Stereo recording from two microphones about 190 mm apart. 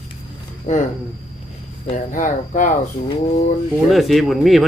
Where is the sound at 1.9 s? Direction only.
40° left (ahead or behind).